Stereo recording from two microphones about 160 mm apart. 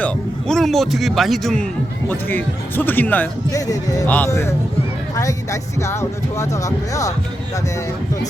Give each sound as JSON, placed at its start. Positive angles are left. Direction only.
{"t": 0.0, "sound": "speech", "side_deg": 5}
{"t": 2.0, "sound": "speech", "side_deg": 10}
{"t": 4.0, "sound": "speech", "side_deg": 10}